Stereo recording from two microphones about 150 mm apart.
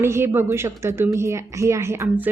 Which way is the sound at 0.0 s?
15° right (ahead or behind).